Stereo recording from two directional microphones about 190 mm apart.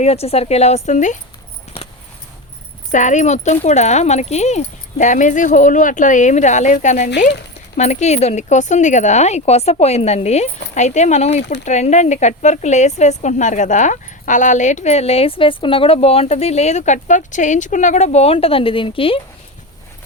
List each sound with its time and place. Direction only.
0.0 s speech: 30° left (ahead or behind)
2.9 s speech: 40° left (ahead or behind)